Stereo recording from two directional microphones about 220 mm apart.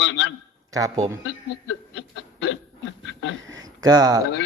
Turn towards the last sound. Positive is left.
turn(degrees=-20)  # may be behind; listen again after turning